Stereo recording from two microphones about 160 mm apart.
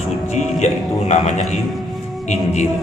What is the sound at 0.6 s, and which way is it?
Speech, 45° left (ahead or behind).